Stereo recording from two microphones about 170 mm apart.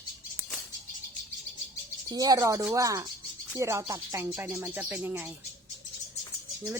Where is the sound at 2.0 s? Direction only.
20° right (ahead or behind).